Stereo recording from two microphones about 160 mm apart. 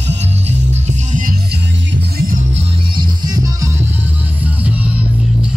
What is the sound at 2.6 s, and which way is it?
Music, 25° right (ahead or behind).